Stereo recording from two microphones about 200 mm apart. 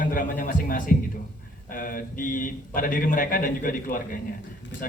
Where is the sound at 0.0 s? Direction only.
45° left (ahead or behind).